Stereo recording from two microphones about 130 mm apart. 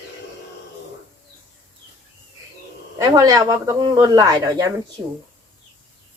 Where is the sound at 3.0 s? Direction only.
30° right (ahead or behind).